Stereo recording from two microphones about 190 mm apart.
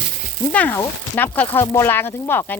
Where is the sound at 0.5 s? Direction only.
10° left (ahead or behind).